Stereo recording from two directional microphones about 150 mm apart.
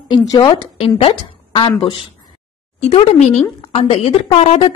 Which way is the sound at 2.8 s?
45° left (ahead or behind).